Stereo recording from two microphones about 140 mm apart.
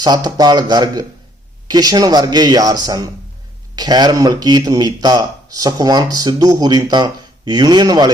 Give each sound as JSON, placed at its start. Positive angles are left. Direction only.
{"t": 0.0, "sound": "speech", "side_deg": -30}